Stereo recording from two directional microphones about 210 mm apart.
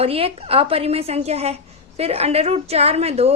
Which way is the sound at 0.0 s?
30° right (ahead or behind).